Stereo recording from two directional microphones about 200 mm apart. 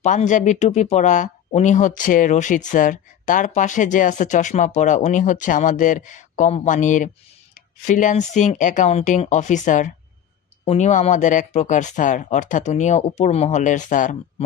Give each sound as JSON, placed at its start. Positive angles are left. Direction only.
{"t": 0.0, "sound": "speech", "side_deg": 40}